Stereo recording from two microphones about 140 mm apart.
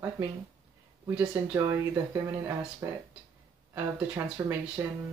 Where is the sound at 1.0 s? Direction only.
15° right (ahead or behind).